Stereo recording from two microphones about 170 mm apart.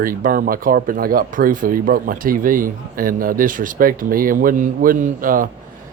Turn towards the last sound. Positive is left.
turn(degrees=-55)  # may be behind; listen again after turning